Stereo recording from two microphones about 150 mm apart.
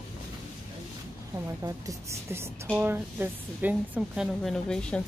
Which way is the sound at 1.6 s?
20° right (ahead or behind).